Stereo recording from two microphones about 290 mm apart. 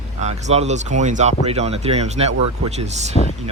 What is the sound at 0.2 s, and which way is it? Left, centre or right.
Speech, right.